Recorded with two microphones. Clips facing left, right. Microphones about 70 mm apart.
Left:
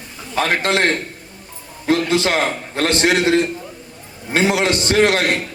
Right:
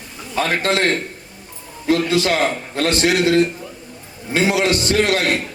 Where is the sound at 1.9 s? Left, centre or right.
Left.